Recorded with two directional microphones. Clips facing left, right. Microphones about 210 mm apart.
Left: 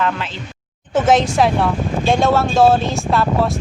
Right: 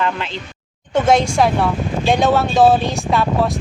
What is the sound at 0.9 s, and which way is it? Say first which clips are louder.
Speech: even; 5° left (ahead or behind).